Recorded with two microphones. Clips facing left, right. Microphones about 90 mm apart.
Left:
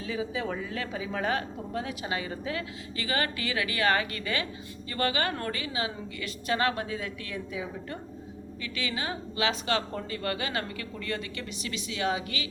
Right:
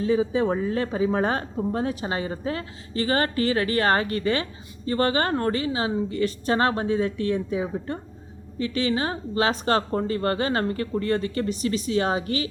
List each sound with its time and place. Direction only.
0.0 s a woman's voice: 35° right (ahead or behind)